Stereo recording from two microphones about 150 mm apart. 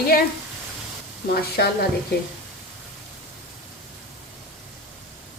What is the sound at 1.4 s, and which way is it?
Speech, 90° left.